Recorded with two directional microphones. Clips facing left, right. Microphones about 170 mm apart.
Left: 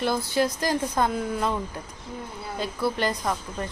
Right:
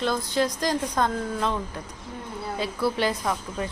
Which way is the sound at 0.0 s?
10° left (ahead or behind).